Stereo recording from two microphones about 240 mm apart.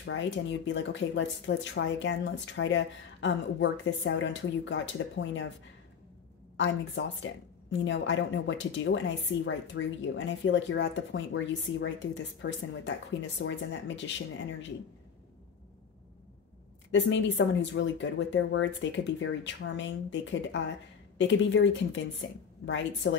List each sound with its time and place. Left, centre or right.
0.0 s a woman's voice: left
6.5 s a woman's voice: left
16.9 s a woman's voice: left
23.0 s a woman's voice: left